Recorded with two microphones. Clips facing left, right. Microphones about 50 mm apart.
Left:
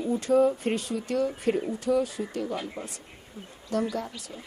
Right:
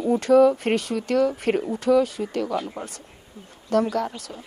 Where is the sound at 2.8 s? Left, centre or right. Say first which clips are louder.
Right 3 dB; right.